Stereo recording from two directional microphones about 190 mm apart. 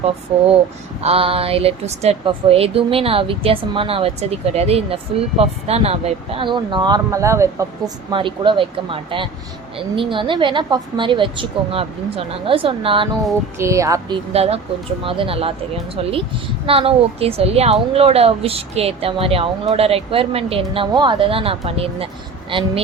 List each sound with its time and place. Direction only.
0.3 s a woman's voice: 30° right (ahead or behind); by 7.7 s 15° right (ahead or behind)
8.1 s a woman's voice: 25° right (ahead or behind)
13.6 s speech: 15° right (ahead or behind)
14.3 s a woman's voice: 30° right (ahead or behind)